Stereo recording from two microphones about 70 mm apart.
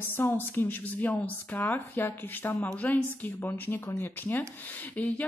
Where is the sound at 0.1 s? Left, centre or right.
Left.